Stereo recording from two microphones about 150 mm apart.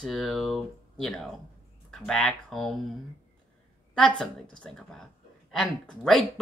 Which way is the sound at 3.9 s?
5° left (ahead or behind).